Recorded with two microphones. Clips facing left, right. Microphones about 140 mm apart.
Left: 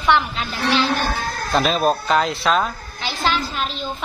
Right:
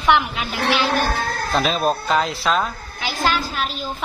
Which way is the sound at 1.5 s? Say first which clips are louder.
Left 2 dB; centre (ahead or behind).